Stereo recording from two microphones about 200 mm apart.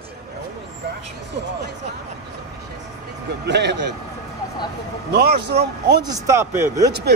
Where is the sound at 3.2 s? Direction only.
60° right (ahead or behind).